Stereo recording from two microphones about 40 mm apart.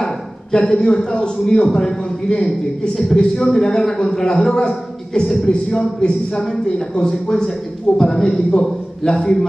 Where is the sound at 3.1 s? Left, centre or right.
Centre.